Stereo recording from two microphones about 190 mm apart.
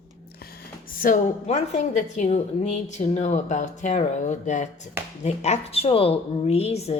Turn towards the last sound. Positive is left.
turn(degrees=35)  # may be behind; listen again after turning